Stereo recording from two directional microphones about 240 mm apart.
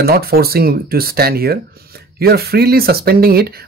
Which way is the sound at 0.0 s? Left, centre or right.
Right.